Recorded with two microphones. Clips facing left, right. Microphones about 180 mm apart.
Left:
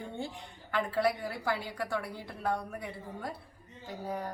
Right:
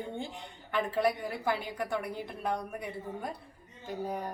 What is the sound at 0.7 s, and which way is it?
A woman's voice, 20° right (ahead or behind).